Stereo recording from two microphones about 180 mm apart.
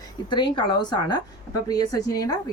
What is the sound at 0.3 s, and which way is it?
A woman's voice, 25° left (ahead or behind).